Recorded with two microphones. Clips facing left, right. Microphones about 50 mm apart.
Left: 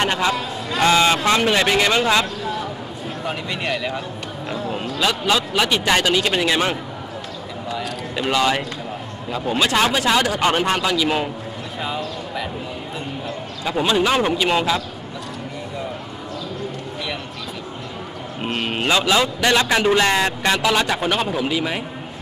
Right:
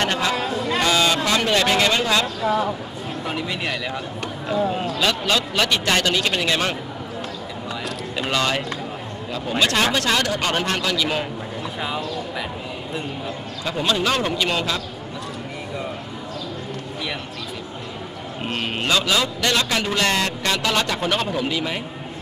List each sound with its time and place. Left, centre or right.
0.0 s a sound: left
1.4 s a man's voice: centre
3.3 s a man's voice: centre
11.8 s a man's voice: centre
13.7 s a man's voice: centre
18.4 s a man's voice: centre